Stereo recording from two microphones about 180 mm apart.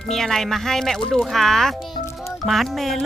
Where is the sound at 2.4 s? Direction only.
Centre (ahead or behind).